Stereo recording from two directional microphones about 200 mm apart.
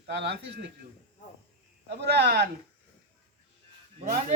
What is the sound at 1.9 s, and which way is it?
Speech, 55° right (ahead or behind).